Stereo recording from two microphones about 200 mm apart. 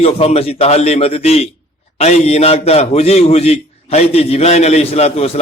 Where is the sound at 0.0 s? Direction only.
30° left (ahead or behind).